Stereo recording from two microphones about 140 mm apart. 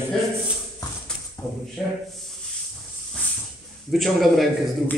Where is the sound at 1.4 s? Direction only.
15° left (ahead or behind).